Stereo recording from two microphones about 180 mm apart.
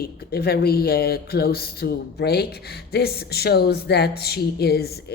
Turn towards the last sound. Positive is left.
turn(degrees=60)  # may be behind; listen again after turning